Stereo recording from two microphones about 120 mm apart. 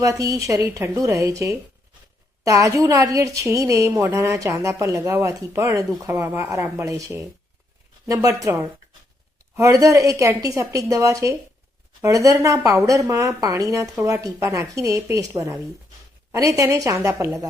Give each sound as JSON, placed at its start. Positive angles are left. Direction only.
{"t": 0.0, "sound": "a woman's voice", "side_deg": -30}